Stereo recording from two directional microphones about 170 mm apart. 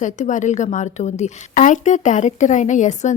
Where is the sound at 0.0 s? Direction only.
45° left (ahead or behind).